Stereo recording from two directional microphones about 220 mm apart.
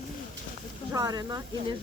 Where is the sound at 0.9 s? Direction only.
15° right (ahead or behind).